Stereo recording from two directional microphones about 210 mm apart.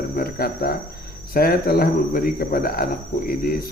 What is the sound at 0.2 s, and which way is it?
Speech, 45° left (ahead or behind).